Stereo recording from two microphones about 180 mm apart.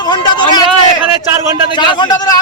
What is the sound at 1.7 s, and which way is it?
Speech, 25° left (ahead or behind).